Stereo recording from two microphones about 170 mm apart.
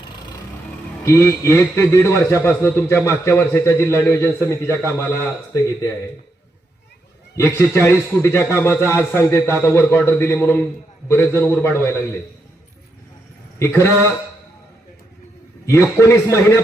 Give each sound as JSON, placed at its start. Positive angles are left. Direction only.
{"t": 1.0, "sound": "a man's voice", "side_deg": 15}
{"t": 7.3, "sound": "a man's voice", "side_deg": 15}
{"t": 13.6, "sound": "a man's voice", "side_deg": 15}
{"t": 15.6, "sound": "a man's voice", "side_deg": 15}